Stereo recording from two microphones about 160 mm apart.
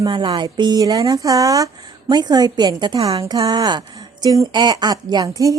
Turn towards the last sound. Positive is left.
turn(degrees=-20)  # may be behind; listen again after turning